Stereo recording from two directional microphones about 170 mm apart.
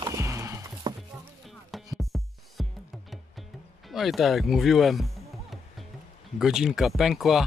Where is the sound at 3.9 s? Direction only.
Centre (ahead or behind).